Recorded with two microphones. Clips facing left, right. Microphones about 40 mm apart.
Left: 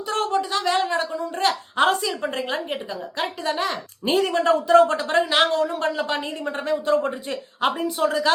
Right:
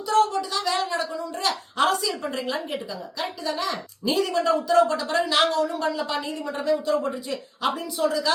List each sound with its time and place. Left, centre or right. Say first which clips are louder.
0.1 s a woman's voice: right 2 dB; left